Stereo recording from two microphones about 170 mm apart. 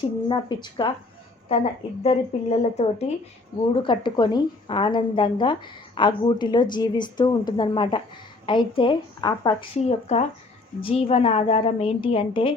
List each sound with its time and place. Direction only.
0.0 s a woman's voice: 25° left (ahead or behind)
3.8 s a woman's voice: 25° left (ahead or behind)
10.1 s a woman's voice: 40° left (ahead or behind)